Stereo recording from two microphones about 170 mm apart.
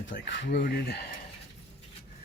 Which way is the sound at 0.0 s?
90° left.